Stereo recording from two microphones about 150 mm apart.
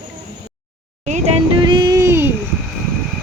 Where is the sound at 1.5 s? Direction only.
30° right (ahead or behind).